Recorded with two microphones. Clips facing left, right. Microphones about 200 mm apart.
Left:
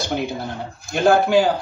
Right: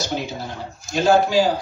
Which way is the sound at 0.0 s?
55° left (ahead or behind).